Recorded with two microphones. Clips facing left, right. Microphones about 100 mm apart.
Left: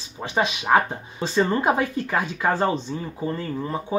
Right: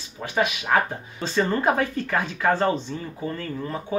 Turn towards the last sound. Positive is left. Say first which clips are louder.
# left 2 dB
turn(degrees=20)  # may be behind; listen again after turning